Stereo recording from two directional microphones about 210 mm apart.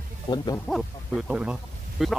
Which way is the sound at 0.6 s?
Centre (ahead or behind).